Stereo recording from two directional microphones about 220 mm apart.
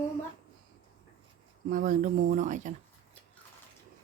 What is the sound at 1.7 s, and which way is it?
Speech, 40° right (ahead or behind).